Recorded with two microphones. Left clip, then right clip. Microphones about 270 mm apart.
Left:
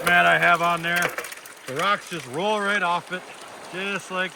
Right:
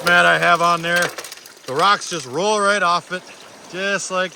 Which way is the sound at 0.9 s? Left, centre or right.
Right.